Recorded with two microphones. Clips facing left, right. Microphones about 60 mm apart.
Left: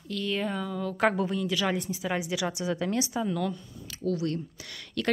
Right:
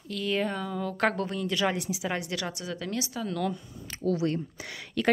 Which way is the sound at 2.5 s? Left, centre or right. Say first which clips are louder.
Left 5 dB; left.